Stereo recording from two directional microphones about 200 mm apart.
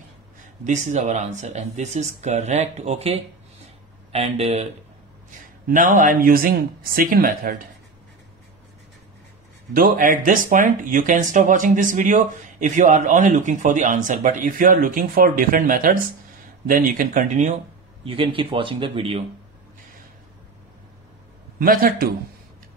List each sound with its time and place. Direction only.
0.7 s speech: 35° right (ahead or behind)
5.7 s speech: 40° right (ahead or behind)
9.8 s speech: 45° right (ahead or behind)
18.0 s speech: 25° right (ahead or behind)
21.5 s speech: 45° right (ahead or behind)